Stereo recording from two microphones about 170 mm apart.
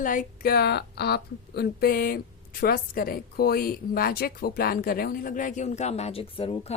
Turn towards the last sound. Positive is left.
turn(degrees=35)  # may be behind; listen again after turning